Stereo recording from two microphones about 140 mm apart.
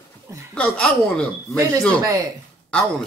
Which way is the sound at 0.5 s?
10° left (ahead or behind).